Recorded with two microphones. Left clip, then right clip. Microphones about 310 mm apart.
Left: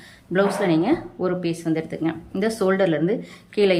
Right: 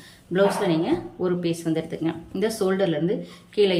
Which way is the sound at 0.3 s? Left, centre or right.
Centre.